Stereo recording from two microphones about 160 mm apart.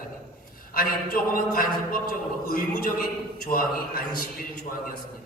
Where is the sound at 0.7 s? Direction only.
65° left (ahead or behind).